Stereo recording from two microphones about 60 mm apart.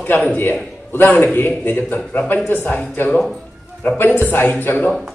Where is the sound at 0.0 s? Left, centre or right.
Left.